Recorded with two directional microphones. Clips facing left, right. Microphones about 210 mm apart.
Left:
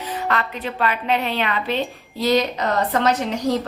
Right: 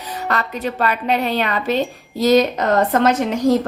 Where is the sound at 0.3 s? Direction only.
40° right (ahead or behind).